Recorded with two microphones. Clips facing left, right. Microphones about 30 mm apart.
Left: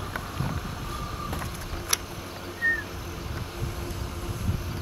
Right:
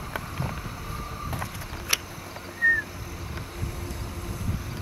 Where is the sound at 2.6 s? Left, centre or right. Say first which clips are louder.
Right 4 dB; left.